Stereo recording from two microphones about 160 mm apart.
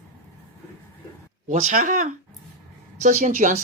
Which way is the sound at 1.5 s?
50° right (ahead or behind).